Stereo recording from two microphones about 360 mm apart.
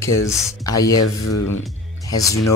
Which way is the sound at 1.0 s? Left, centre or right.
Left.